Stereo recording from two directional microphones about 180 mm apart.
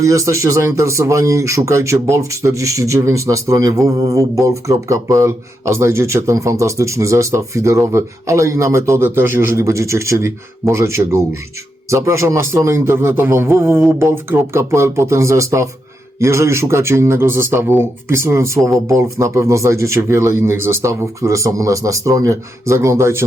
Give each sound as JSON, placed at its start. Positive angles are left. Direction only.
{"t": 0.0, "sound": "speech", "side_deg": -15}